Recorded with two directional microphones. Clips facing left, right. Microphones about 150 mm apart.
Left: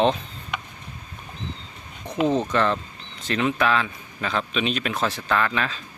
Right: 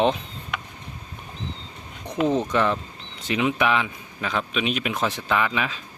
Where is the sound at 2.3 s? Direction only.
10° right (ahead or behind).